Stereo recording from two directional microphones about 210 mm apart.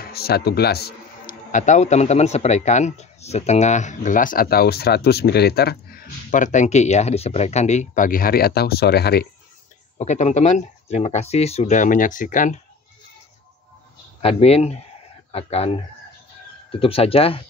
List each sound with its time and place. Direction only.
0.0 s speech: 45° left (ahead or behind)
9.9 s speech: 35° left (ahead or behind)
14.2 s speech: 30° left (ahead or behind)
16.8 s speech: 25° left (ahead or behind)